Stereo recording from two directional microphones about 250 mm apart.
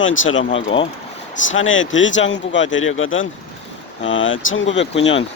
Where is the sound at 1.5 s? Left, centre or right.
Left.